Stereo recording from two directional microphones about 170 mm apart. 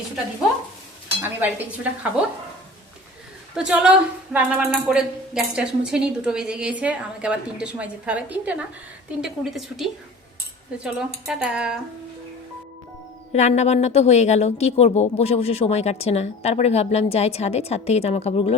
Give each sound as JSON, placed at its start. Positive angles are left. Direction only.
{"t": 1.2, "sound": "stir", "side_deg": -10}
{"t": 3.5, "sound": "a woman's voice", "side_deg": -5}
{"t": 13.3, "sound": "a woman's voice", "side_deg": 40}